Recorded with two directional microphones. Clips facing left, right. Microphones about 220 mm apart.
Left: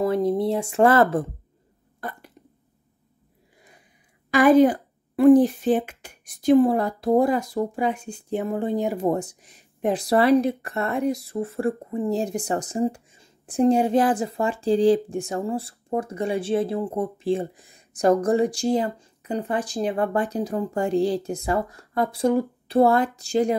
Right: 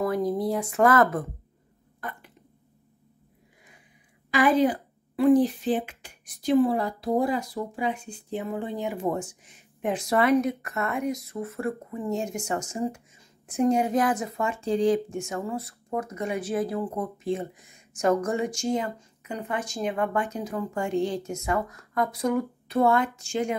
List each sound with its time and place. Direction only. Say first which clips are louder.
0.0 s speech: left 4 dB; 25° left (ahead or behind)
2.0 s burping: left 3 dB; 35° left (ahead or behind)
4.3 s speech: left 6 dB; 45° left (ahead or behind)